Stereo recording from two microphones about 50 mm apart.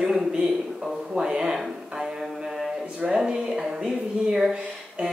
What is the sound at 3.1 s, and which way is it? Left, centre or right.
Speech, centre.